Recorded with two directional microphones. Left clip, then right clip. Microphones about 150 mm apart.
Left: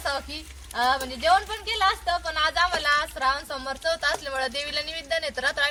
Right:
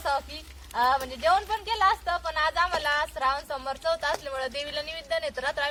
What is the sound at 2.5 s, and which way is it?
A woman's voice, 20° right (ahead or behind).